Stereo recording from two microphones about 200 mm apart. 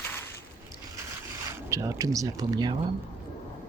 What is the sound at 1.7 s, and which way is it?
Speech, 15° right (ahead or behind).